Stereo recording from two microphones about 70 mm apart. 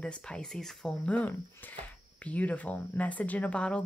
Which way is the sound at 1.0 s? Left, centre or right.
Left.